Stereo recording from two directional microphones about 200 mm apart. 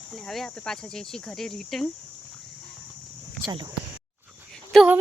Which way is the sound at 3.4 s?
25° right (ahead or behind).